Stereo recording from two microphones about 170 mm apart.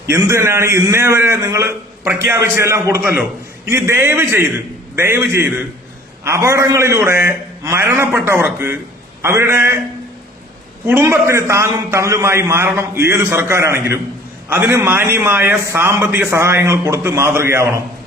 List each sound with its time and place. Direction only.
0.0 s a man's voice: 15° right (ahead or behind)
10.8 s a man's voice: 15° right (ahead or behind)